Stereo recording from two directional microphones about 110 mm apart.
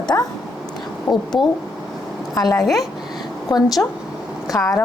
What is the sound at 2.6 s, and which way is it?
Speech, centre (ahead or behind).